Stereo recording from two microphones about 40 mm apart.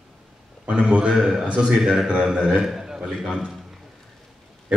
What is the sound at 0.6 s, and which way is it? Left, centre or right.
Speech, right.